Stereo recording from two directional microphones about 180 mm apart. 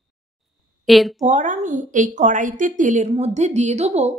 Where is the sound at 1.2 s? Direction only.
45° right (ahead or behind).